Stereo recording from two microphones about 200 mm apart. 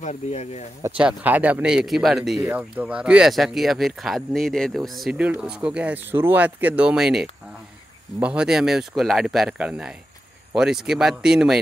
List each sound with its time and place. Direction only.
0.0 s speech: 35° left (ahead or behind)
0.8 s speech: 10° right (ahead or behind)